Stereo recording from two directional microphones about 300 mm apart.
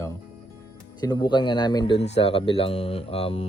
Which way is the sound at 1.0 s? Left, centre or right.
Centre.